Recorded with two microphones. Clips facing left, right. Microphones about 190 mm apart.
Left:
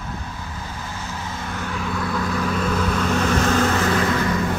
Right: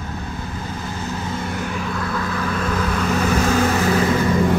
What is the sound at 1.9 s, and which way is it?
Vehicle, 5° left (ahead or behind).